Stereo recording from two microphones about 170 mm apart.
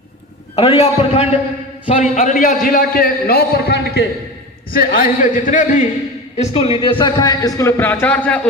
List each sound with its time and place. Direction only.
0.5 s a man's voice: 35° left (ahead or behind)
2.1 s a man's voice: 50° left (ahead or behind); by 4.0 s 70° left (ahead or behind)
4.7 s a man's voice: 60° left (ahead or behind)
6.3 s speech: 35° left (ahead or behind); by 8.4 s 10° left (ahead or behind)